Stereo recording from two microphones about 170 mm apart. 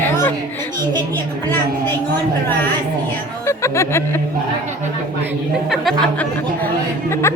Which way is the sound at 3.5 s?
15° left (ahead or behind).